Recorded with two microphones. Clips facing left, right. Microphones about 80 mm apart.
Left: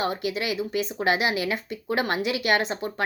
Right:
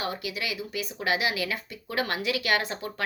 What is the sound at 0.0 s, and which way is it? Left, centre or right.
Speech, left.